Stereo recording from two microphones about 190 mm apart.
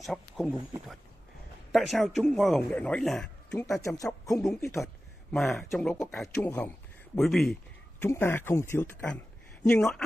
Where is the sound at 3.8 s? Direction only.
15° left (ahead or behind).